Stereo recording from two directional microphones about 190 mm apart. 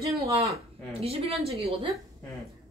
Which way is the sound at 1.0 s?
30° right (ahead or behind).